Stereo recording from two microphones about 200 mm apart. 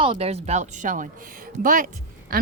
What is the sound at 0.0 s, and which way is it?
Speech, 30° right (ahead or behind).